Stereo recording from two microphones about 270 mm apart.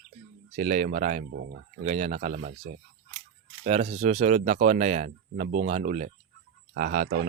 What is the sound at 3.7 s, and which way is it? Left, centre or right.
Speech, right.